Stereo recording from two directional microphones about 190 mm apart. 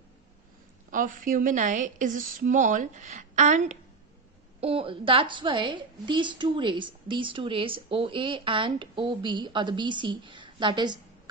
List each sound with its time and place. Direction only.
0.9 s a woman's voice: 45° right (ahead or behind); by 11.0 s 25° right (ahead or behind)